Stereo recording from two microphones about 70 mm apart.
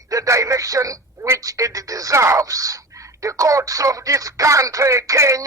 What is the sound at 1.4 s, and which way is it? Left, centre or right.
Speech, right.